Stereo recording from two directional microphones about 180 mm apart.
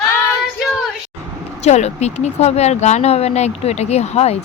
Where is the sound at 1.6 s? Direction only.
40° left (ahead or behind).